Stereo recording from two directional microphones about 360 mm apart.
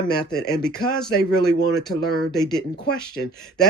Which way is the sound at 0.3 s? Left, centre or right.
Centre.